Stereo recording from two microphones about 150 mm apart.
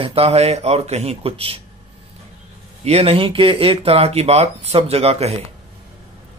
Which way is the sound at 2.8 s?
45° right (ahead or behind).